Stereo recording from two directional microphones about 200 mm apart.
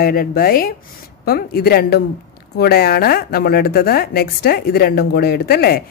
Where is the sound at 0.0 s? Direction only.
50° left (ahead or behind).